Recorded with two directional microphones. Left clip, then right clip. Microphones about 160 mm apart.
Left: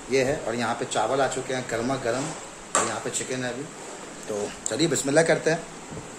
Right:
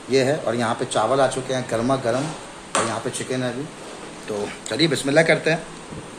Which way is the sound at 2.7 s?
35° left (ahead or behind).